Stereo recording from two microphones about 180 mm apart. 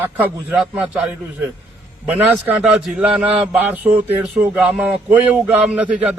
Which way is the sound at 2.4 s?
5° right (ahead or behind).